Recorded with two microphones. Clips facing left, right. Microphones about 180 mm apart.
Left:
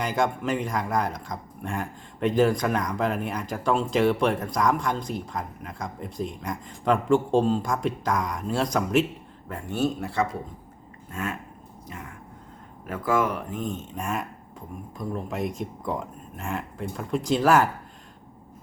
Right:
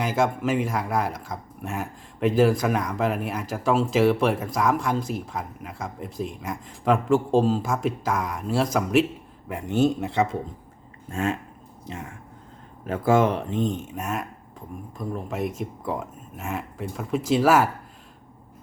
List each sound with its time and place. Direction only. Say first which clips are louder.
0.0 s speech: right 2 dB; 5° right (ahead or behind)
9.5 s speech: right 5 dB; 15° right (ahead or behind)
12.8 s speech: right 5 dB; 25° right (ahead or behind)
13.7 s speech: right 1 dB; 5° right (ahead or behind)